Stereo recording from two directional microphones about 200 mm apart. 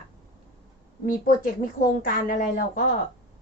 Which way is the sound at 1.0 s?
45° left (ahead or behind).